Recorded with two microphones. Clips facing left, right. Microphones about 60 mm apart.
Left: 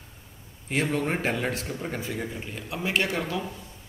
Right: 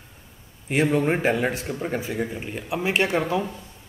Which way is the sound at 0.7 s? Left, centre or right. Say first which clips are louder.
Right 6 dB; centre.